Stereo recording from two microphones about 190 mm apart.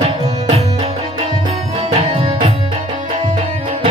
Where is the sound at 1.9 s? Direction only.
35° right (ahead or behind).